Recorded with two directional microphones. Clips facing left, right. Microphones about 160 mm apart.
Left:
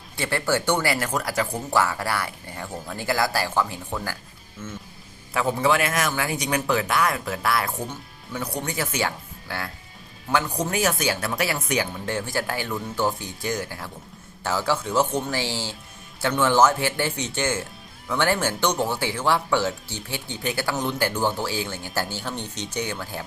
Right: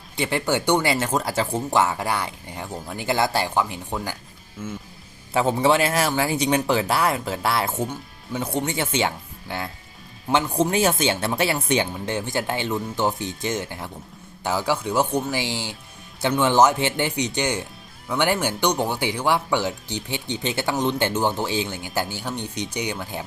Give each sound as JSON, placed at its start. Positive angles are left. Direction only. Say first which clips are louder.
{"t": 0.2, "sound": "speech", "louder": "right 1 dB", "side_deg": -20}
{"t": 5.3, "sound": "speech", "louder": "right 3 dB", "side_deg": -25}